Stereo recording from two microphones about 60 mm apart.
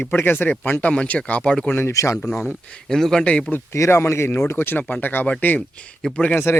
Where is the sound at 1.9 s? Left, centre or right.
Left.